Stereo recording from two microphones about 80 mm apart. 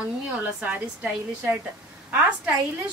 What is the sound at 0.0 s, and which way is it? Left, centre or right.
A woman's voice, centre.